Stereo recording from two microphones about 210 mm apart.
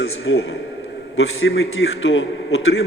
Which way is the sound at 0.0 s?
75° left (ahead or behind).